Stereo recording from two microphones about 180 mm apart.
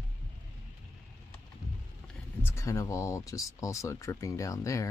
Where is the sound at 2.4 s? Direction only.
15° left (ahead or behind).